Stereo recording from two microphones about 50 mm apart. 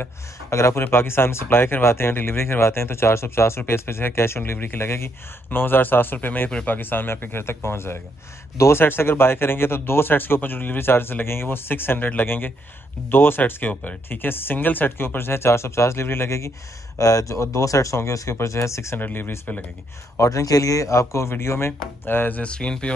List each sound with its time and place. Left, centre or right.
0.5 s a man's voice: left
0.8 s speech: left
13.5 s speech: left
17.2 s speech: left
18.9 s speech: left
20.2 s speech: left
21.3 s speech: left
22.4 s speech: left